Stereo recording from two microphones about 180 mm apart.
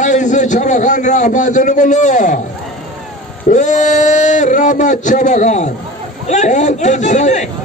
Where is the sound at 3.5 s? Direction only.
40° left (ahead or behind).